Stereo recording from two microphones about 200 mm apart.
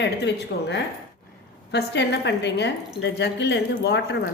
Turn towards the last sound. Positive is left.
turn(degrees=55)  # may be behind; listen again after turning